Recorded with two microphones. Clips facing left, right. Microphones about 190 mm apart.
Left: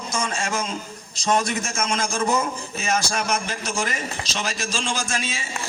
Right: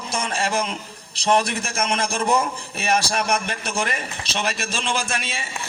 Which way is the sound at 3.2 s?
60° right (ahead or behind).